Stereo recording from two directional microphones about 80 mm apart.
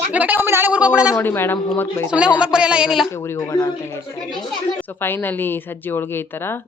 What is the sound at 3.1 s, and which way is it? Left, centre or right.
Speech, left.